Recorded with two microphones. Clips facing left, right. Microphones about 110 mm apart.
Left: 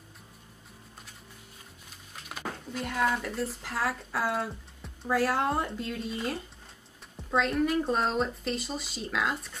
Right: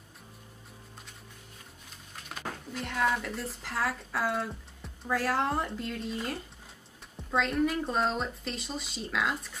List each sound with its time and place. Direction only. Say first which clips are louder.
2.2 s speech: left 2 dB; 5° left (ahead or behind)